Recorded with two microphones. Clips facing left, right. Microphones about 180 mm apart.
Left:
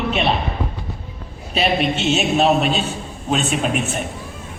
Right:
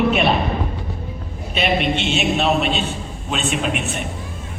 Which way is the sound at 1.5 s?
35° left (ahead or behind).